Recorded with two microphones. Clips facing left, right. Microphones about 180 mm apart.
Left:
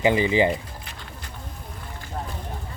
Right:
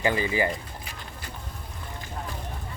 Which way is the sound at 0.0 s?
20° left (ahead or behind).